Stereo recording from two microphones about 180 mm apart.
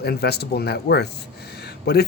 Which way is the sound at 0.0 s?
65° left (ahead or behind).